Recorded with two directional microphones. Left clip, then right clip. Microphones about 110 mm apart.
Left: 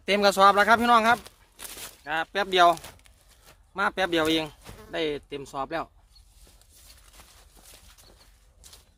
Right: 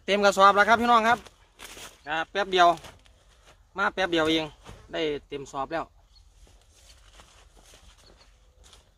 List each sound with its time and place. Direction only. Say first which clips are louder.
0.0 s speech: even; 35° left (ahead or behind)
8.7 s horse: left 3 dB; 50° left (ahead or behind)